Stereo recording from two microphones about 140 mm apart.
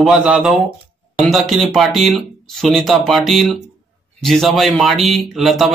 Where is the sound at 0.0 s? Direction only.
5° right (ahead or behind).